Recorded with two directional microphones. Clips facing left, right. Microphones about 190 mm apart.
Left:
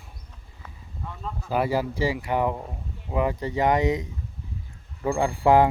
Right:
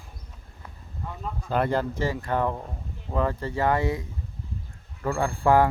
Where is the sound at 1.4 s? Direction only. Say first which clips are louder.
Even; 5° left (ahead or behind).